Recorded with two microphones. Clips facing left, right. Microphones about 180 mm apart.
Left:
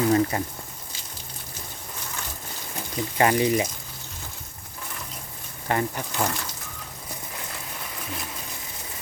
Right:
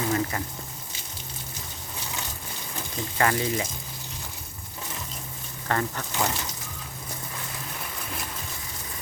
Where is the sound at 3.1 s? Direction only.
20° left (ahead or behind).